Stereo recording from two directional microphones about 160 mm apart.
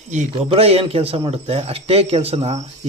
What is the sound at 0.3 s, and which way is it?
Speech, 35° right (ahead or behind).